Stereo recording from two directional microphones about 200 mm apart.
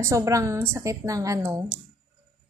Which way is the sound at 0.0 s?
15° right (ahead or behind).